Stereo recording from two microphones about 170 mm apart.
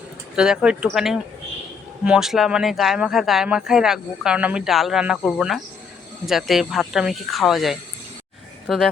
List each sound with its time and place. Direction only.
0.3 s speech: 5° right (ahead or behind)